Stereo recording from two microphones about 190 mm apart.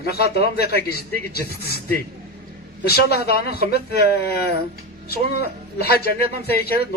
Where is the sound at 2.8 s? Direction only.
55° left (ahead or behind).